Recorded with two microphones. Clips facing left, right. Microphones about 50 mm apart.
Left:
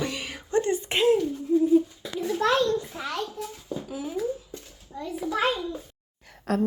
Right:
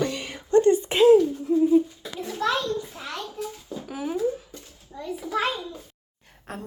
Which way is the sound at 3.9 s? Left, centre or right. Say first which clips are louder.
Right 7 dB; right.